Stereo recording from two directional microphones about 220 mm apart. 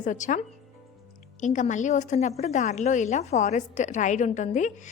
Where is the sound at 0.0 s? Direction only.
35° left (ahead or behind).